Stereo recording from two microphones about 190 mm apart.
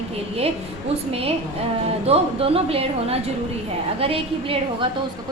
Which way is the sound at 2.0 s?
30° right (ahead or behind).